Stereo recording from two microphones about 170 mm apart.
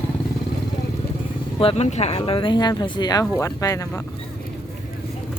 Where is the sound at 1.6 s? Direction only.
40° left (ahead or behind); by 4.0 s 20° left (ahead or behind).